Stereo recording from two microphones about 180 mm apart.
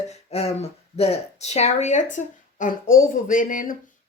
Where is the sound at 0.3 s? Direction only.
35° left (ahead or behind).